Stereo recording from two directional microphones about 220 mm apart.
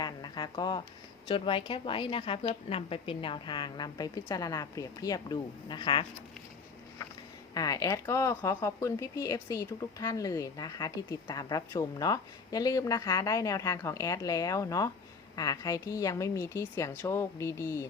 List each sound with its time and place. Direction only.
0.0 s a sound: 20° left (ahead or behind)
1.3 s a woman's voice: 25° left (ahead or behind)
7.5 s speech: 15° left (ahead or behind)